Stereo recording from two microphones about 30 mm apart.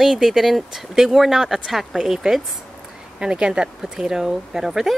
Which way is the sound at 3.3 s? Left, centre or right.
Right.